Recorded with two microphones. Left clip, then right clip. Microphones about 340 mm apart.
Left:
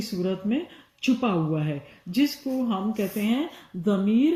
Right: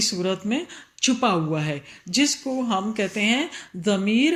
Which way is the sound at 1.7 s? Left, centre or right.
Right.